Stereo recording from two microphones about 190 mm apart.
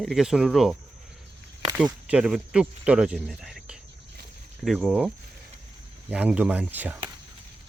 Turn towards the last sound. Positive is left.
turn(degrees=-10)  # may be behind; listen again after turning